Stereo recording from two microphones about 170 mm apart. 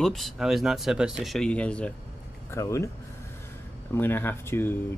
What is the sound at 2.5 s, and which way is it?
Speech, 15° left (ahead or behind).